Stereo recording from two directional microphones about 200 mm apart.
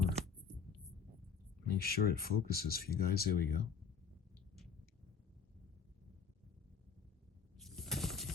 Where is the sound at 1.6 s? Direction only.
50° left (ahead or behind).